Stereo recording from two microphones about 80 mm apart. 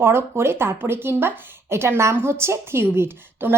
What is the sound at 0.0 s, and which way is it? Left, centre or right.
A woman's voice, right.